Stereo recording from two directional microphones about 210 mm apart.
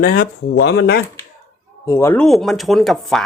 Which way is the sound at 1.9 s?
10° left (ahead or behind).